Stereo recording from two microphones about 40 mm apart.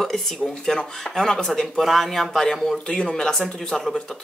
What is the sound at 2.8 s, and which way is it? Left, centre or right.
Speech, left.